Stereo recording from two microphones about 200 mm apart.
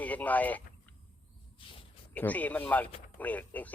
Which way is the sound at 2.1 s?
10° left (ahead or behind).